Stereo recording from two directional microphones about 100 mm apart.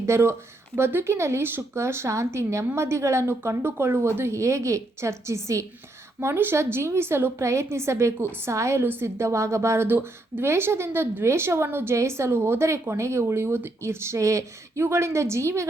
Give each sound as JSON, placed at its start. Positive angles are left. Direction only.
{"t": 0.0, "sound": "a woman's voice", "side_deg": -25}